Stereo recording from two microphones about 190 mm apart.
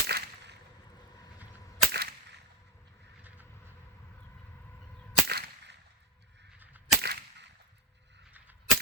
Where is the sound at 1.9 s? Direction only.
55° right (ahead or behind).